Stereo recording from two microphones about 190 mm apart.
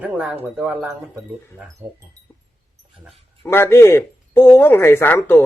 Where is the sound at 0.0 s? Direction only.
5° right (ahead or behind).